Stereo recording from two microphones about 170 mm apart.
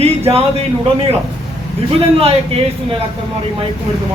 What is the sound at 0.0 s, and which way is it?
Speech, 35° right (ahead or behind).